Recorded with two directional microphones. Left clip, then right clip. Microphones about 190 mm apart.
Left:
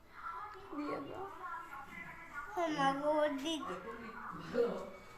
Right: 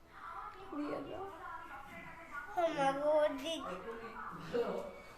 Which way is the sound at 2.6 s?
20° right (ahead or behind).